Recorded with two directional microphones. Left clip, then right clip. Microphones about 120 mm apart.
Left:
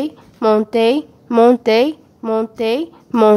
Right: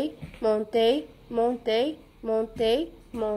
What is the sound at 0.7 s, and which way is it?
Speech, 45° left (ahead or behind).